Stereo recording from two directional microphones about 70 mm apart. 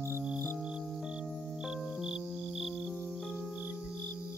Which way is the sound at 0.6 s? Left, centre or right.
Centre.